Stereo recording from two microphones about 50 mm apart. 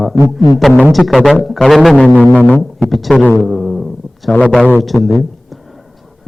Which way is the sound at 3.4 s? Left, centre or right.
Centre.